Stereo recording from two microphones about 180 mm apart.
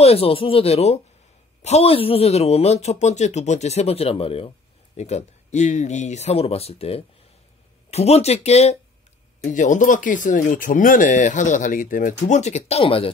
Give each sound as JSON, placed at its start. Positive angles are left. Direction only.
{"t": 0.0, "sound": "speech", "side_deg": 35}